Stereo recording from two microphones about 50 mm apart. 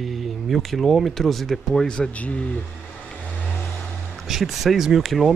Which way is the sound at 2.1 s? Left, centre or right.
Left.